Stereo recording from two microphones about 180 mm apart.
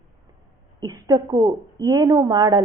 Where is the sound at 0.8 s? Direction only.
20° right (ahead or behind).